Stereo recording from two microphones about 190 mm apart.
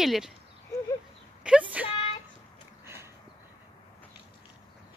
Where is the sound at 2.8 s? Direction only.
15° right (ahead or behind).